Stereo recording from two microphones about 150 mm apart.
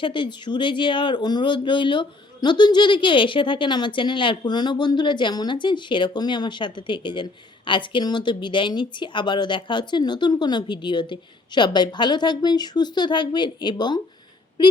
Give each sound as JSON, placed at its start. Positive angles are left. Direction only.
{"t": 0.0, "sound": "speech", "side_deg": 35}